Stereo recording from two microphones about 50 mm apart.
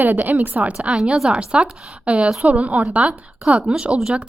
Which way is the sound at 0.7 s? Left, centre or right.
Centre.